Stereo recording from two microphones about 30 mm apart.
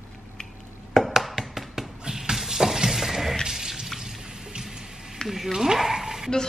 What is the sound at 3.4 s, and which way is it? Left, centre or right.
Water, centre.